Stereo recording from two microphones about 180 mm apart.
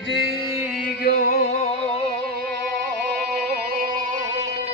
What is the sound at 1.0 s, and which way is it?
Music, 55° left (ahead or behind).